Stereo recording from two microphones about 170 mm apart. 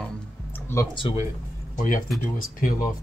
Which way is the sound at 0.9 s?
30° left (ahead or behind).